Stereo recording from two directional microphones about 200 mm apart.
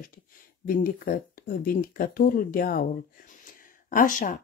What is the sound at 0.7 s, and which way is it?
Speech, 45° left (ahead or behind).